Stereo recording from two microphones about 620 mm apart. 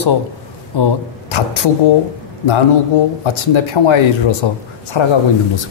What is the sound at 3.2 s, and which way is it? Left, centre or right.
Speech, left.